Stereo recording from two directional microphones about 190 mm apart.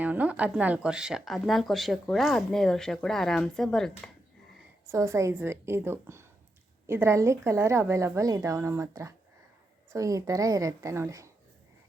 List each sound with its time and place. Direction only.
0.0 s speech: 10° right (ahead or behind)
4.9 s a woman's voice: 15° right (ahead or behind)